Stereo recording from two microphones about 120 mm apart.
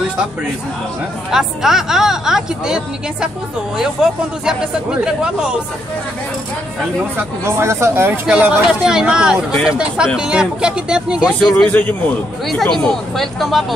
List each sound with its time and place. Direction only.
1.3 s a woman's voice: 5° right (ahead or behind)
7.0 s speech: 15° right (ahead or behind)
8.3 s speech: 10° right (ahead or behind)
11.5 s a man's voice: 15° left (ahead or behind)
12.4 s a woman's voice: 5° left (ahead or behind)